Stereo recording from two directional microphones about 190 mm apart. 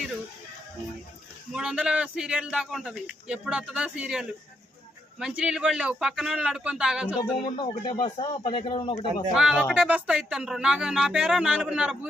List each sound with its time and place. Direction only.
1.5 s a man's voice: 5° right (ahead or behind)
7.2 s speech: 25° left (ahead or behind)
9.3 s a man's voice: 5° right (ahead or behind)